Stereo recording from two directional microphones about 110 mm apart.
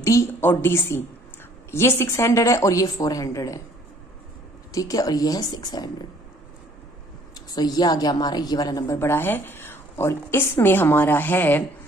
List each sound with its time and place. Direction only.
0.0 s a woman's voice: 25° left (ahead or behind)
4.7 s speech: 35° left (ahead or behind)
7.3 s a woman's voice: 35° left (ahead or behind); by 11.6 s 20° left (ahead or behind)